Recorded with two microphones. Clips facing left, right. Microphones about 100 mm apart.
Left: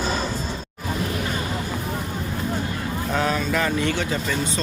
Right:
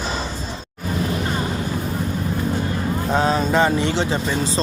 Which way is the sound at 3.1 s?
25° right (ahead or behind).